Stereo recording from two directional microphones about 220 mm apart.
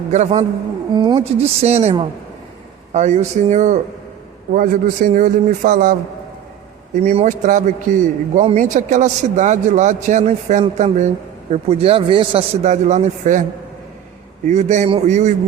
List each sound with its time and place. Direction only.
0.1 s a man's voice: 30° right (ahead or behind)
7.0 s a man's voice: 30° right (ahead or behind)
14.4 s a man's voice: 30° right (ahead or behind)